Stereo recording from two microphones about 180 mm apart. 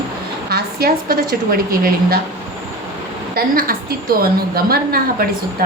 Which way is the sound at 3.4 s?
55° right (ahead or behind).